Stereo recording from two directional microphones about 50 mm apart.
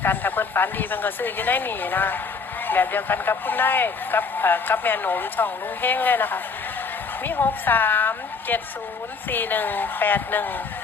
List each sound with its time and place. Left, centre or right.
0.0 s speech: left